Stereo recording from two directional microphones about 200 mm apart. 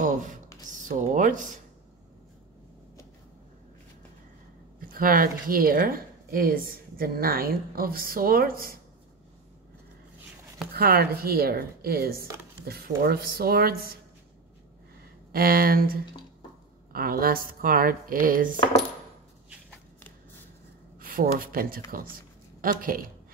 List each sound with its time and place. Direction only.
0.0 s a sound: 40° right (ahead or behind)
4.7 s a sound: 45° right (ahead or behind)
5.5 s a woman's voice: 45° right (ahead or behind)
10.7 s a woman's voice: 50° right (ahead or behind)
15.3 s a woman's voice: 45° right (ahead or behind)
21.0 s a woman's voice: 45° right (ahead or behind)